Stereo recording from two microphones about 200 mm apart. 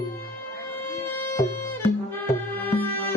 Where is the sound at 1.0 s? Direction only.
10° left (ahead or behind).